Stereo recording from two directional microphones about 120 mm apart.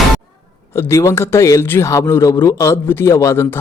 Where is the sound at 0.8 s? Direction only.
25° left (ahead or behind).